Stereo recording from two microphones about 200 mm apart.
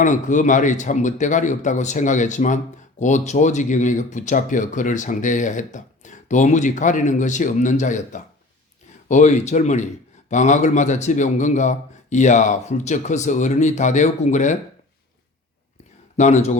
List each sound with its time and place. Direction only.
0.0 s a man's voice: 40° left (ahead or behind)
16.1 s a man's voice: 35° left (ahead or behind)